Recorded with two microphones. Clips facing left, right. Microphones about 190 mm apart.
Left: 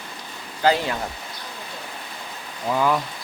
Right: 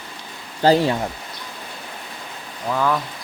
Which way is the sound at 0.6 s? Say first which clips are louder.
Right 5 dB; 35° right (ahead or behind).